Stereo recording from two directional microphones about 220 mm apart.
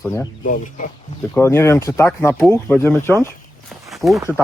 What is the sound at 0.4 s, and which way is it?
Speech, 35° left (ahead or behind).